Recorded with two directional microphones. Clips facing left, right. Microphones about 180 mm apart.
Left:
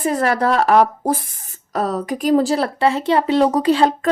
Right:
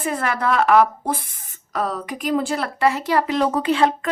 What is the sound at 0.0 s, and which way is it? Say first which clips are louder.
Speech: left 5 dB; 40° left (ahead or behind).